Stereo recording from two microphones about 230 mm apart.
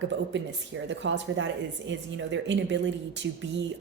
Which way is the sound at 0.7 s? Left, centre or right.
Right.